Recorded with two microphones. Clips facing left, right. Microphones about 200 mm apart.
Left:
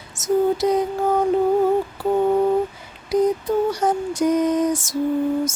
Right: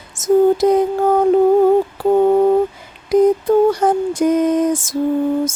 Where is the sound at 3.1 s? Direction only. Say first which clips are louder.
Right 6 dB; 50° right (ahead or behind).